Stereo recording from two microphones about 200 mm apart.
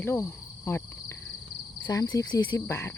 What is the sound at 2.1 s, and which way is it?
Speech, 15° left (ahead or behind).